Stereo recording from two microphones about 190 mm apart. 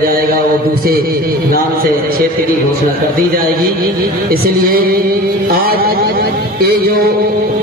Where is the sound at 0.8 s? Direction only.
50° right (ahead or behind).